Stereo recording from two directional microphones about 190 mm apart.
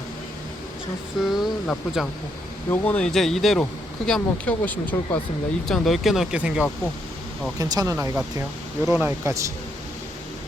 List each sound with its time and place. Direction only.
1.2 s speech: centre (ahead or behind)
7.6 s speech: 20° right (ahead or behind)